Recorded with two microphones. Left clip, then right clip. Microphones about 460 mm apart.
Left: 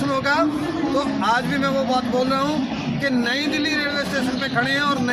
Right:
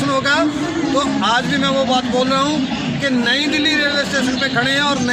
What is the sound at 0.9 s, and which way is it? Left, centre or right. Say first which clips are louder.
A man's voice: right 4 dB; left.